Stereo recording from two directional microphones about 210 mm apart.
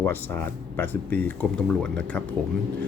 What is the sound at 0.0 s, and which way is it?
Speech, 10° left (ahead or behind).